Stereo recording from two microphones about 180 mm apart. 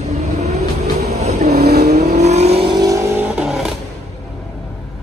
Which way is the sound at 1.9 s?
40° right (ahead or behind).